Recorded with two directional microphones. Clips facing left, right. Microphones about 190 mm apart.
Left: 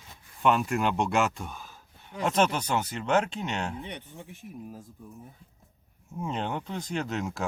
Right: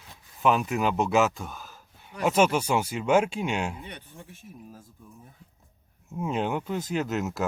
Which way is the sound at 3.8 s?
20° left (ahead or behind).